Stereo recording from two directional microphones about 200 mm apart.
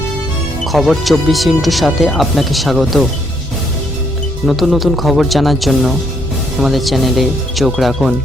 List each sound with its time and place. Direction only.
0.6 s speech: centre (ahead or behind)
4.4 s speech: centre (ahead or behind)